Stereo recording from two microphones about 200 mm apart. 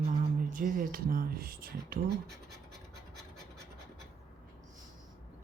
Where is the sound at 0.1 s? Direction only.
45° right (ahead or behind).